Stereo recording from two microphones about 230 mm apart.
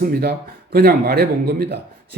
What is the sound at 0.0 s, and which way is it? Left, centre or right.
Speech, right.